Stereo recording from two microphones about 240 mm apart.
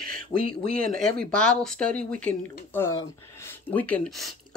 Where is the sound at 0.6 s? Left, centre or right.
Right.